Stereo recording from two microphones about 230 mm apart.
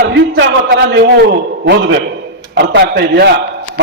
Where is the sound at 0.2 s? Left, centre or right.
Right.